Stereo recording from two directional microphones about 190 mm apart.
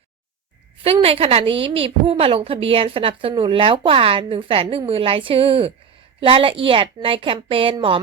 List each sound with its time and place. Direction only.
0.9 s a woman's voice: 30° right (ahead or behind)